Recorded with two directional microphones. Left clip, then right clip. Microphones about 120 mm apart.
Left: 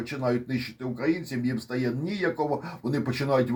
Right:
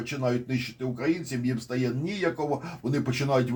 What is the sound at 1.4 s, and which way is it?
Speech, 30° left (ahead or behind).